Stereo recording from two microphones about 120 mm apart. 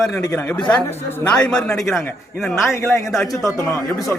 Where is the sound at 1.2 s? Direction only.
5° left (ahead or behind).